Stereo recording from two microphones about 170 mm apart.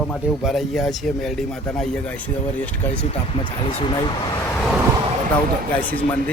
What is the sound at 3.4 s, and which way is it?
Speech, 30° left (ahead or behind).